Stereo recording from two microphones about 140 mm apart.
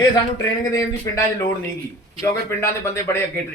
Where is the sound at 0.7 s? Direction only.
25° left (ahead or behind).